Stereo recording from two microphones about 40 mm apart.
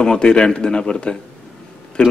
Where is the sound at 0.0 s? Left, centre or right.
Left.